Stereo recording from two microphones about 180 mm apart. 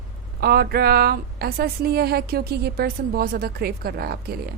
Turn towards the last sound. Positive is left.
turn(degrees=-60)  # may be behind; listen again after turning